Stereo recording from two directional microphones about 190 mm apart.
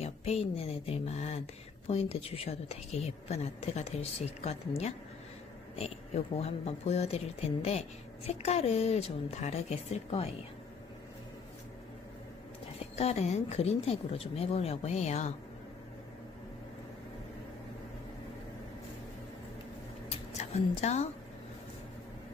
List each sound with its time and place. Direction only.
0.0 s a woman's voice: 35° left (ahead or behind)
12.7 s a woman's voice: 35° left (ahead or behind)
20.1 s a sound: 35° left (ahead or behind)